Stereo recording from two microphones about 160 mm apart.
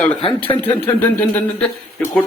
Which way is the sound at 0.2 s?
35° left (ahead or behind).